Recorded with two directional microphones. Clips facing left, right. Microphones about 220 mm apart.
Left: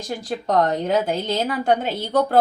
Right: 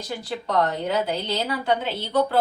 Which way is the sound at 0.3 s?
45° left (ahead or behind).